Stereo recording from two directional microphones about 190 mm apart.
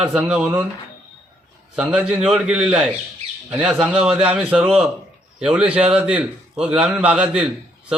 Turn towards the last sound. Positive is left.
turn(degrees=-5)  # may be behind; listen again after turning